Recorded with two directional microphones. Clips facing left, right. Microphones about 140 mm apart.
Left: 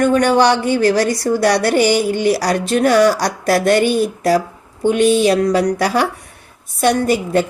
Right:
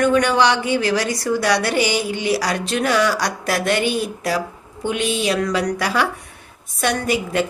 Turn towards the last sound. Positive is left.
turn(degrees=35)  # may be behind; listen again after turning